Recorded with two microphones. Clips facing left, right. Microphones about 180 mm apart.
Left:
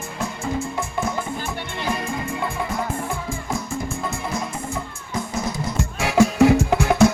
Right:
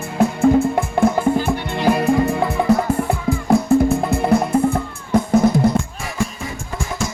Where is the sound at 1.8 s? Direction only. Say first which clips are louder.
Right 12 dB; 65° right (ahead or behind).